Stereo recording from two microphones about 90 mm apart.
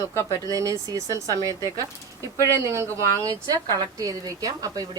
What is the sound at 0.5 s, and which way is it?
Speech, 40° right (ahead or behind).